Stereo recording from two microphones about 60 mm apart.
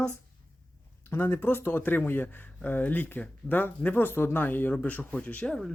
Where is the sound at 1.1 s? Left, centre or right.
Left.